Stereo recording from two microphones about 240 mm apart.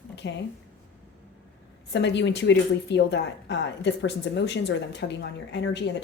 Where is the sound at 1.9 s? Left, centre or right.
Left.